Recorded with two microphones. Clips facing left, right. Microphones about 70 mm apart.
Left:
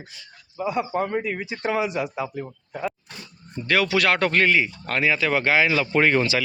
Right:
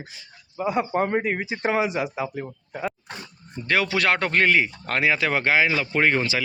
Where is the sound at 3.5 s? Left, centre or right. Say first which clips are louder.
Left 2 dB; right.